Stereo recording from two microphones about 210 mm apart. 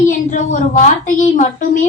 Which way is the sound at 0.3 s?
35° left (ahead or behind).